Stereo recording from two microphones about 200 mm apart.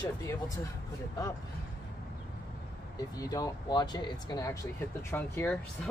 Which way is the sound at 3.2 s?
20° left (ahead or behind).